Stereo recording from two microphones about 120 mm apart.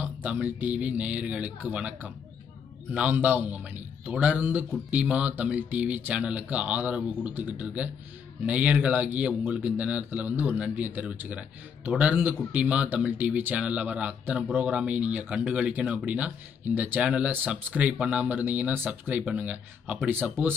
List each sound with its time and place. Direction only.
0.0 s a man's voice: 15° right (ahead or behind)